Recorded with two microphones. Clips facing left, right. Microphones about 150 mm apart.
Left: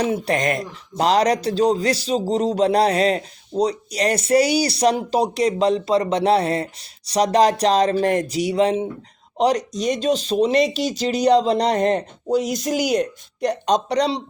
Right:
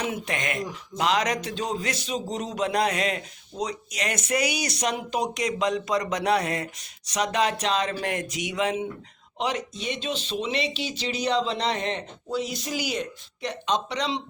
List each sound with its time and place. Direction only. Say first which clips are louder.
0.0 s a man's voice: left 9 dB; 35° left (ahead or behind)